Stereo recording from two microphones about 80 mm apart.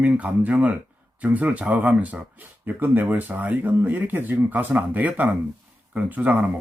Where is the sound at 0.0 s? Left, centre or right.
Centre.